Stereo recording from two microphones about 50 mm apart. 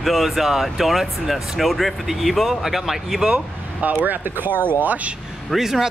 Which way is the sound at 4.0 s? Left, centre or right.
Right.